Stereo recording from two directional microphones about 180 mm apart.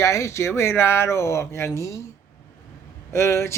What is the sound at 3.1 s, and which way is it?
Speech, 15° left (ahead or behind).